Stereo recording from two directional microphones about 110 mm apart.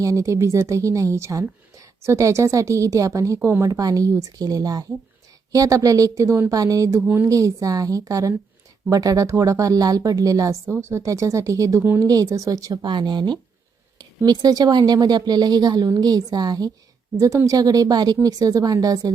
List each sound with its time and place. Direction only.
0.0 s a woman's voice: 30° right (ahead or behind)